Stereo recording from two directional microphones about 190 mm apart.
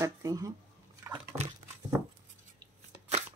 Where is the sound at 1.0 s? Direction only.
10° right (ahead or behind).